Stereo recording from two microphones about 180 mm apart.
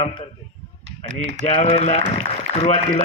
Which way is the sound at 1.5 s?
35° left (ahead or behind).